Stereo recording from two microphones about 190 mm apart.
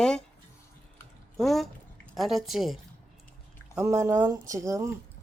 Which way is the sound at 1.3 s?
Centre (ahead or behind).